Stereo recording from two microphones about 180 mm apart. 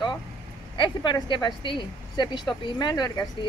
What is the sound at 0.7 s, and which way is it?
Speech, 25° left (ahead or behind).